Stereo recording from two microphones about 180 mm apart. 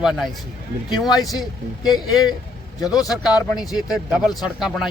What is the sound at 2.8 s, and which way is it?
Speech, 20° left (ahead or behind).